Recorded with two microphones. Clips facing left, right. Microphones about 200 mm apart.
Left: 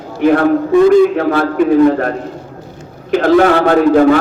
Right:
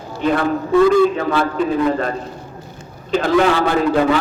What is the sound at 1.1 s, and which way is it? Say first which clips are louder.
A man's voice: left 5 dB; 65° left (ahead or behind).